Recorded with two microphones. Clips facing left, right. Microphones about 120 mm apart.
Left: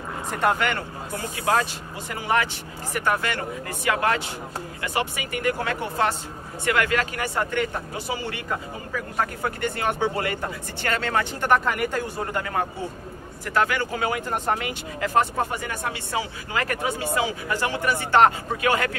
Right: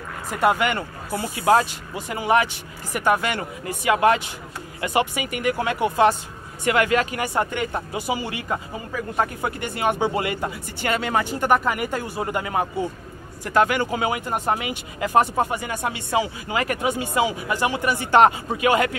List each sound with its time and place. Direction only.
0.3 s speech: 10° right (ahead or behind)